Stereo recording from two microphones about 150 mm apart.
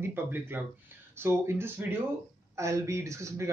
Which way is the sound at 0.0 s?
15° right (ahead or behind).